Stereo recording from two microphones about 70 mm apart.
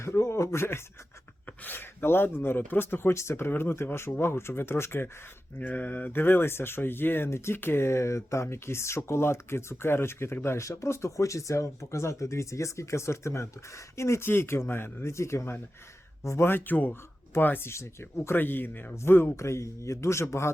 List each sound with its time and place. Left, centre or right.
0.0 s speech: left
5.5 s speech: left